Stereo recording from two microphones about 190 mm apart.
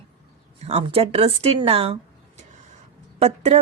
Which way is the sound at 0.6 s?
30° right (ahead or behind).